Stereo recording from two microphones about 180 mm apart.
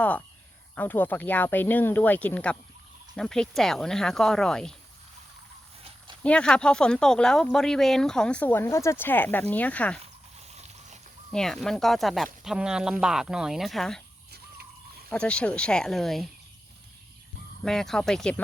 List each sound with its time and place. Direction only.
0.0 s speech: 10° left (ahead or behind)
6.2 s speech: 5° left (ahead or behind)
11.3 s speech: centre (ahead or behind)
14.3 s a sound: 60° right (ahead or behind)
15.1 s speech: 5° left (ahead or behind)
17.6 s speech: centre (ahead or behind)